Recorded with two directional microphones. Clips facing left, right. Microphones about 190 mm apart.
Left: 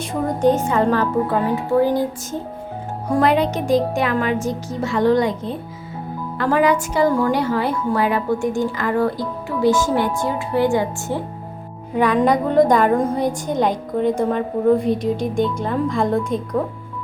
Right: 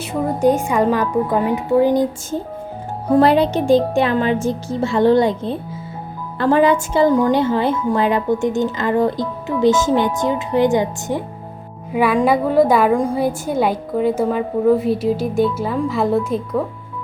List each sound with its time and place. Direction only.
0.0 s a woman's voice: 10° right (ahead or behind)
3.1 s speech: 30° right (ahead or behind)
11.9 s a woman's voice: 10° right (ahead or behind)